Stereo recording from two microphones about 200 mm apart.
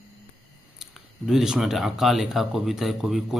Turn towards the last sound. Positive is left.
turn(degrees=0)  # may be behind; listen again after turning